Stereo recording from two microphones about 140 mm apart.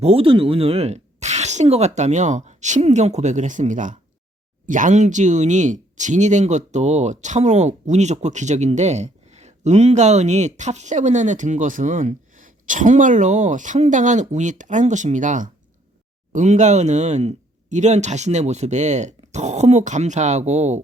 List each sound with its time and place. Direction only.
0.0 s speech: 40° right (ahead or behind)